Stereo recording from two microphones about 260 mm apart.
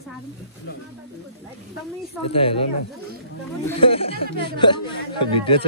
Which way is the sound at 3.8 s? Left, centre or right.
Left.